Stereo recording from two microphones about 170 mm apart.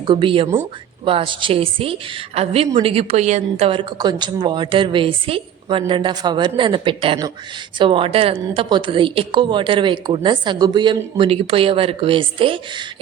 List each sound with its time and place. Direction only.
0.0 s a woman's voice: 30° right (ahead or behind)